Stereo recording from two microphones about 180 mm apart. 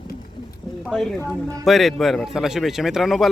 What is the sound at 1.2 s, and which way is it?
Speech, 15° right (ahead or behind).